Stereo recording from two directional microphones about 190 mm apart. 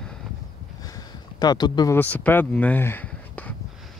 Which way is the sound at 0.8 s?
20° left (ahead or behind).